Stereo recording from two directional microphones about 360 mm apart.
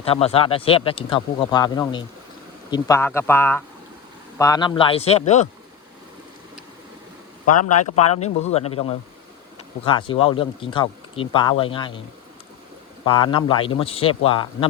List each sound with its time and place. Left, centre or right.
0.0 s speech: centre
7.9 s speech: centre
13.1 s speech: centre